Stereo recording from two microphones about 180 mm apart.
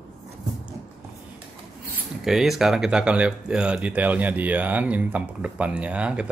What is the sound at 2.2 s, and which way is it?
Speech, centre (ahead or behind).